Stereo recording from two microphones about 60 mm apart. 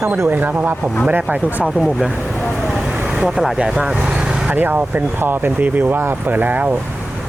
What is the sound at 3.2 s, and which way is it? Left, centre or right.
Speech, centre.